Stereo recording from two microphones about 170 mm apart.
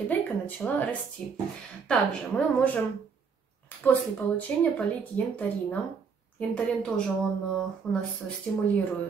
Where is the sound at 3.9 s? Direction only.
10° left (ahead or behind).